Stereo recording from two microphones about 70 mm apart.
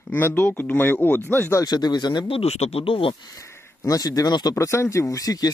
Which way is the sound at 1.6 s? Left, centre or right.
Left.